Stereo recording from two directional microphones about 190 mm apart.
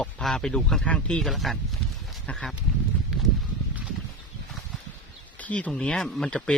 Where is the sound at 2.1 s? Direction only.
Centre (ahead or behind).